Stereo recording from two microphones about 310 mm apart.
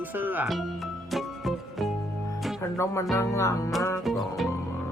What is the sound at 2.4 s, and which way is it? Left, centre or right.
Music, centre.